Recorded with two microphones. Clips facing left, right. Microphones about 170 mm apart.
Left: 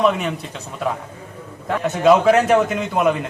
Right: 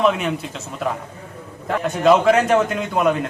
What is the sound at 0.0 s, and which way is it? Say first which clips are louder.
A man's voice: even; centre (ahead or behind).